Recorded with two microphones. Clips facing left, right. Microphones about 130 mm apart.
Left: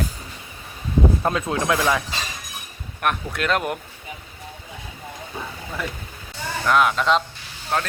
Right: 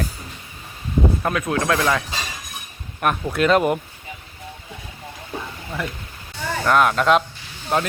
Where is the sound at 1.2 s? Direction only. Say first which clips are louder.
Right 1 dB; 25° left (ahead or behind).